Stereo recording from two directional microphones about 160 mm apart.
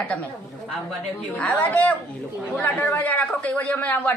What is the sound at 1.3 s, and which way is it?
A man's voice, 10° left (ahead or behind).